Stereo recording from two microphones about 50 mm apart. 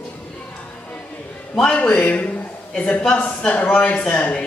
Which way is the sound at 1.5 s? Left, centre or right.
Centre.